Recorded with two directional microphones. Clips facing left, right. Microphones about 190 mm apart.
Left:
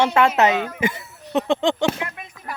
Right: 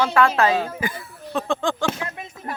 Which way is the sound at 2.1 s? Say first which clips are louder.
Right 3 dB; 30° right (ahead or behind).